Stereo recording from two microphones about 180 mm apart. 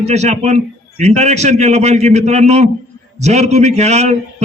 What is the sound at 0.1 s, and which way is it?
A man's voice, 40° right (ahead or behind).